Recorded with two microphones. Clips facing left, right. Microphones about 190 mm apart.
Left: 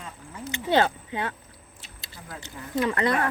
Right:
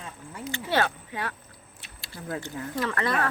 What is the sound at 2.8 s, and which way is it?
Speech, 20° left (ahead or behind).